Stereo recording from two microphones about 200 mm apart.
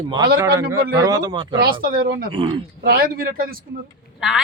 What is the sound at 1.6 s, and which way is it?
Speech, 50° right (ahead or behind).